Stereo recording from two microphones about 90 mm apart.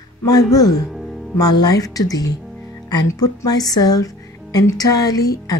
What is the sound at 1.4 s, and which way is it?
A woman's voice, 45° left (ahead or behind).